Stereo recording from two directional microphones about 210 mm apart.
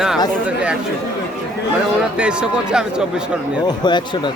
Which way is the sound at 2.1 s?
5° right (ahead or behind).